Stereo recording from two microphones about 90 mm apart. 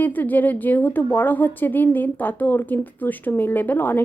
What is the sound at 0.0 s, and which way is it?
A woman's voice, 20° left (ahead or behind).